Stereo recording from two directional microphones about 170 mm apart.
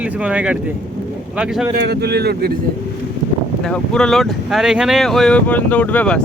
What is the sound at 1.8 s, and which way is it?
Speech, 75° right (ahead or behind).